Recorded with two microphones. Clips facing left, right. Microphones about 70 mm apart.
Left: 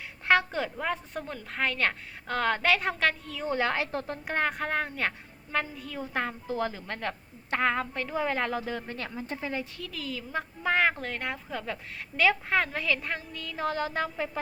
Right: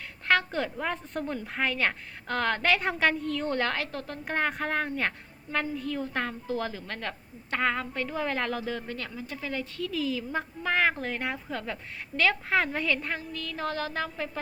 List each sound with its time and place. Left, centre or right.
0.3 s a woman's voice: centre
3.9 s a woman's voice: left
4.3 s a woman's voice: centre
8.9 s a woman's voice: left
9.7 s a woman's voice: centre